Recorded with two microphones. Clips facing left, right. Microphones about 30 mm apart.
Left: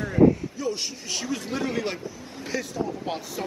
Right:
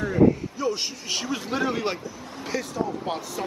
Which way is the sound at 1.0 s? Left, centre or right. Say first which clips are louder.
Right 1 dB; centre.